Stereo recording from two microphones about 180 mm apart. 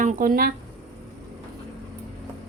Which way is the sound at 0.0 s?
50° right (ahead or behind).